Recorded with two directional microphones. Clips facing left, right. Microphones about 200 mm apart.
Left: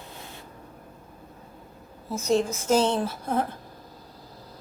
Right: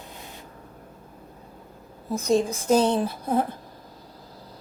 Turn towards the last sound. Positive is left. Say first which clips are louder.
# right 3 dB
turn(degrees=-15)  # may be behind; listen again after turning